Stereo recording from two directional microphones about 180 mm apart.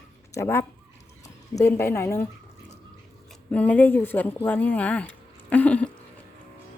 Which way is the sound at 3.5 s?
10° left (ahead or behind).